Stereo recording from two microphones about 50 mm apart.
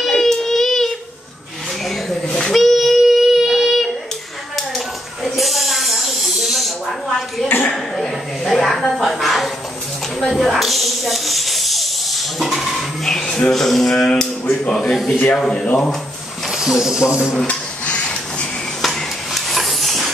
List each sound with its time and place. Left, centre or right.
0.0 s child singing: centre
1.9 s child singing: centre
4.6 s a sound: centre
10.2 s snake: centre
13.5 s a sound: centre
15.3 s speech: centre
16.4 s speech: centre
17.5 s printer: left
18.8 s a sound: centre